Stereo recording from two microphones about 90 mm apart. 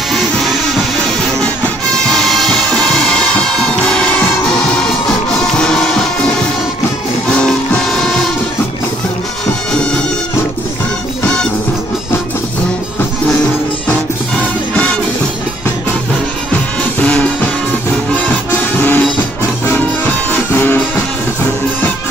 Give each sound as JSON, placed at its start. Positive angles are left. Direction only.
{"t": 0.1, "sound": "music", "side_deg": 0}
{"t": 2.0, "sound": "music", "side_deg": 5}
{"t": 5.6, "sound": "music", "side_deg": 10}
{"t": 7.4, "sound": "music", "side_deg": 5}
{"t": 9.7, "sound": "music", "side_deg": 10}
{"t": 17.0, "sound": "music", "side_deg": 15}